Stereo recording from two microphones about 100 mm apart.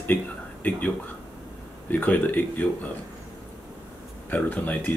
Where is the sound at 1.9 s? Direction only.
15° left (ahead or behind).